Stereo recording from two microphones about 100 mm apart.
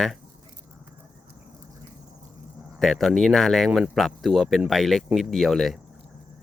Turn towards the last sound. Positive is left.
turn(degrees=0)  # may be behind; listen again after turning